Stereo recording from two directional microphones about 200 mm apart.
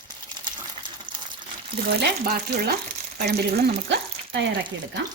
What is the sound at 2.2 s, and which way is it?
Frying, 50° right (ahead or behind).